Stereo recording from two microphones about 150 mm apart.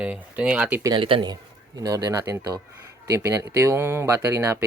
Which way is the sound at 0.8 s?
25° right (ahead or behind).